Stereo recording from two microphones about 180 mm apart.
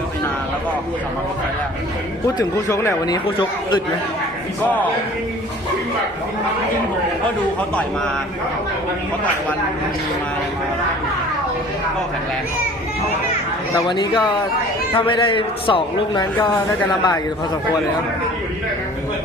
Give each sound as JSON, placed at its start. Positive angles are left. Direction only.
{"t": 2.2, "sound": "speech", "side_deg": 15}
{"t": 13.8, "sound": "a man's voice", "side_deg": 25}